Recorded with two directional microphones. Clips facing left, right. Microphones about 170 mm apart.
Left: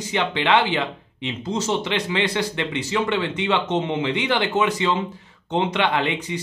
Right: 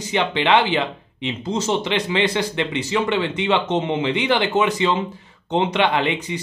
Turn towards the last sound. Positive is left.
turn(degrees=-20)  # may be behind; listen again after turning